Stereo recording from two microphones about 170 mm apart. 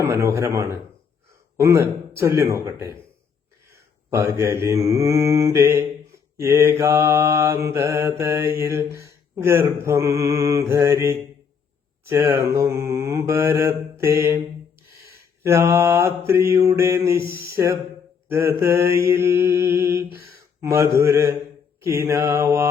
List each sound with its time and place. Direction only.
0.0 s speech: 15° right (ahead or behind)
3.7 s mantra: 15° right (ahead or behind)
6.3 s speech: 15° right (ahead or behind)
15.4 s speech: 15° right (ahead or behind)
19.1 s mantra: 15° right (ahead or behind)
21.0 s speech: 15° right (ahead or behind)